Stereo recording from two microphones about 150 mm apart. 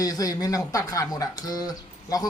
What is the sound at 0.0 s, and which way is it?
A man's voice, 25° left (ahead or behind).